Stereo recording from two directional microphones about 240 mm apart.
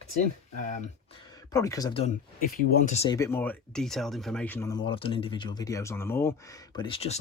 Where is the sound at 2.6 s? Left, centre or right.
Left.